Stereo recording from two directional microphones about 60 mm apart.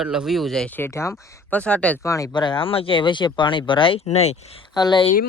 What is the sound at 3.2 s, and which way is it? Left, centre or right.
Speech, left.